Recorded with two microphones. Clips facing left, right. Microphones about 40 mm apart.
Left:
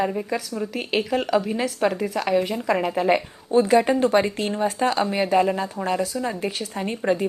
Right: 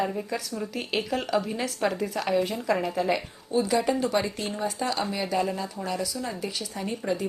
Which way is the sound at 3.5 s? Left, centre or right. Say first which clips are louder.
Left 7 dB; left.